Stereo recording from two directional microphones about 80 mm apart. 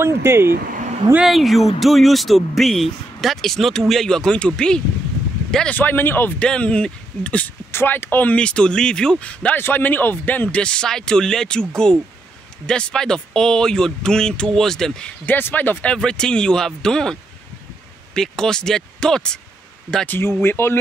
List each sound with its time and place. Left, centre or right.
0.0 s speech: right
1.2 s speech: centre
5.7 s speech: left
6.4 s speech: centre
7.7 s speech: left; by 15.1 s centre
15.2 s speech: left; by 19.4 s centre
20.1 s speech: left